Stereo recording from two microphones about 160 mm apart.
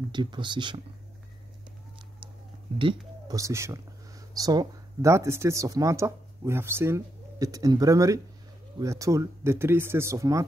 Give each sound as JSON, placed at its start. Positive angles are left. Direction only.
{"t": 0.1, "sound": "speech", "side_deg": -30}
{"t": 3.3, "sound": "speech", "side_deg": -20}